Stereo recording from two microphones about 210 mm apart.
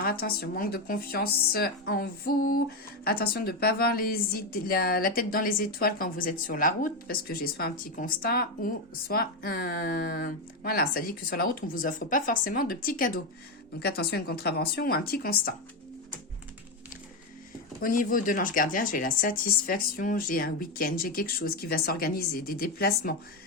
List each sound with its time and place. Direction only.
0.0 s speech: 45° left (ahead or behind)
17.7 s speech: 40° left (ahead or behind)